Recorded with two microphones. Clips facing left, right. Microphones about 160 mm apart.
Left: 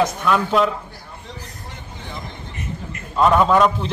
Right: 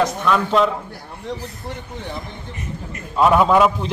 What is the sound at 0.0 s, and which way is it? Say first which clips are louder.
Speech: even; centre (ahead or behind).